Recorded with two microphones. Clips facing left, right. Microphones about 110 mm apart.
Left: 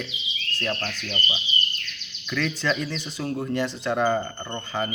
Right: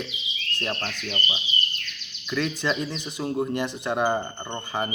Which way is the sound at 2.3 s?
20° right (ahead or behind).